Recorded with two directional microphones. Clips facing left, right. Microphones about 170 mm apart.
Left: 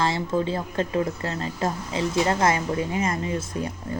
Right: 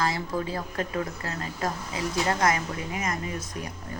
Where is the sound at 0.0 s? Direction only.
25° left (ahead or behind).